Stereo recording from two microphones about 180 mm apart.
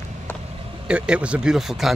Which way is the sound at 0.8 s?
5° right (ahead or behind).